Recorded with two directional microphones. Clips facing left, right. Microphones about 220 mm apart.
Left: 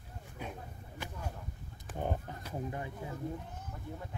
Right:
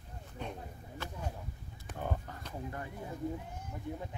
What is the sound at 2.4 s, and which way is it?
Speech, 15° left (ahead or behind).